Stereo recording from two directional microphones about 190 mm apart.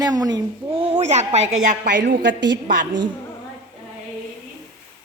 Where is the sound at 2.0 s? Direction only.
65° right (ahead or behind).